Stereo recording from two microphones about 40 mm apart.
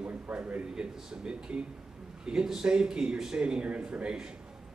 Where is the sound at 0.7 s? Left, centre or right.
Centre.